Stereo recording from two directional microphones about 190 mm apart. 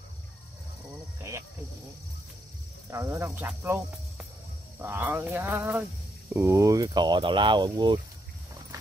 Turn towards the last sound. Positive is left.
turn(degrees=-20)  # may be behind; listen again after turning